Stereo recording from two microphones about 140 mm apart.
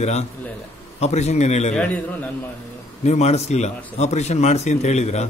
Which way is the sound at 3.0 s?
55° left (ahead or behind).